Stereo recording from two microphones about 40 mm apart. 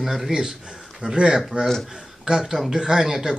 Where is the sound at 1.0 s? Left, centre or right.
Right.